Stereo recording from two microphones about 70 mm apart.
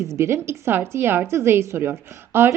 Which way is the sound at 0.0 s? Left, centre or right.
Right.